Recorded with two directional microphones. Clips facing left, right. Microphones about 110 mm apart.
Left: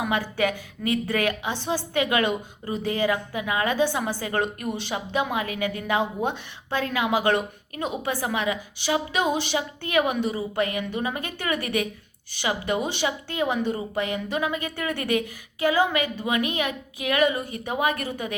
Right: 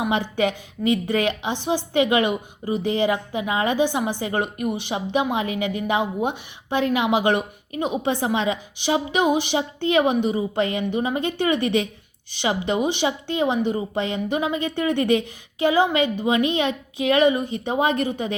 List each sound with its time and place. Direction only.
0.0 s a woman's voice: 20° right (ahead or behind)